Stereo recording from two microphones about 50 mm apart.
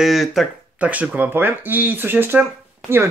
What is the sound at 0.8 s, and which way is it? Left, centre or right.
Speech, right.